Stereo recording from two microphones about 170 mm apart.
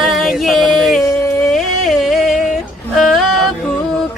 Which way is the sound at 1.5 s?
Centre (ahead or behind).